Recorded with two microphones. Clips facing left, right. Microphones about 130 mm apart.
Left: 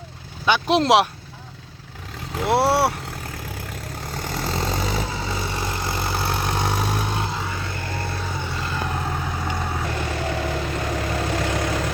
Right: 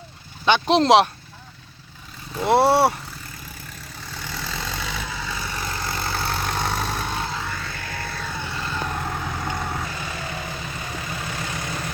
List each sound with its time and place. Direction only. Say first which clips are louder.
0.4 s speech: right 1 dB; 5° left (ahead or behind)
2.5 s speech: right 2 dB; 5° left (ahead or behind)
4.0 s vehicle: left 5 dB; 40° left (ahead or behind); by 9.8 s 5° left (ahead or behind)
9.9 s vehicle: left 6 dB; 60° left (ahead or behind); by 11.7 s 85° left